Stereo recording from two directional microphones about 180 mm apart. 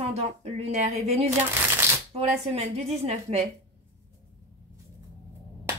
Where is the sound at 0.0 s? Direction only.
35° right (ahead or behind).